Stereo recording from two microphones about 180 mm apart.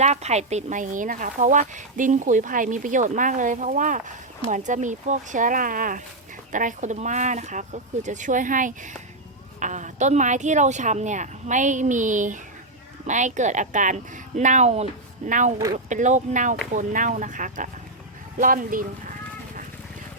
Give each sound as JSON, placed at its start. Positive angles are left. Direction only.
{"t": 0.0, "sound": "a woman's voice", "side_deg": -40}
{"t": 15.5, "sound": "speech", "side_deg": -20}
{"t": 15.9, "sound": "a woman's voice", "side_deg": -45}